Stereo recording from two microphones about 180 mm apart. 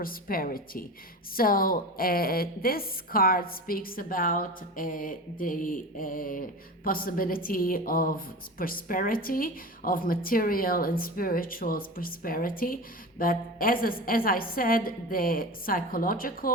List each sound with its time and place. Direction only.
0.0 s a woman's voice: 55° left (ahead or behind)